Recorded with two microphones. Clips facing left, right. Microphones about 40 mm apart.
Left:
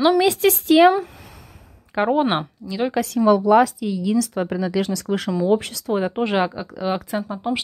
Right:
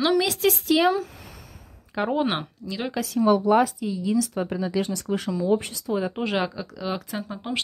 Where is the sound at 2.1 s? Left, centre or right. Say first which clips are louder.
Left 5 dB; left.